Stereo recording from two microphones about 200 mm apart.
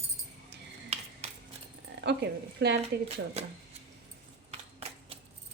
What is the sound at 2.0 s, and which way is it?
Speech, 60° right (ahead or behind).